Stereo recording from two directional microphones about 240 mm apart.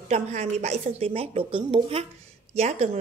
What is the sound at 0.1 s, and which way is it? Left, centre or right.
Speech, right.